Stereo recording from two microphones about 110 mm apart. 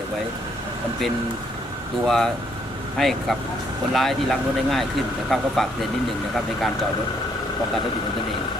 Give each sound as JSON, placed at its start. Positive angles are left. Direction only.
{"t": 2.0, "sound": "speech", "side_deg": 5}